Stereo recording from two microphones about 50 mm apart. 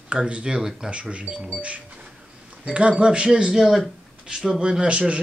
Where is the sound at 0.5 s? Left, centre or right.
Centre.